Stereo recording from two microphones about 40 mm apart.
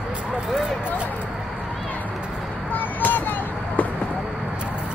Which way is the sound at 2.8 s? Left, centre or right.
Left.